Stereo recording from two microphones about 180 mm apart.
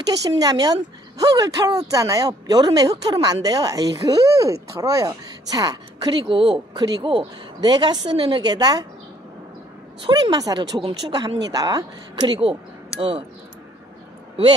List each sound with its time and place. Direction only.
0.3 s speech: 20° right (ahead or behind)
10.0 s speech: 25° right (ahead or behind)